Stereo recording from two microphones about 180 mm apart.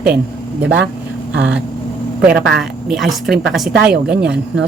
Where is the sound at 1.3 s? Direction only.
85° right.